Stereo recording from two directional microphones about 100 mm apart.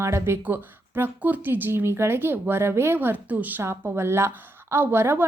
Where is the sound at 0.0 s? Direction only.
30° right (ahead or behind).